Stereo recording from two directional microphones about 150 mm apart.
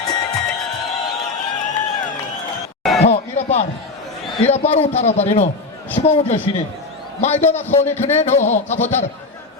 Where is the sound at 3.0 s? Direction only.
45° left (ahead or behind).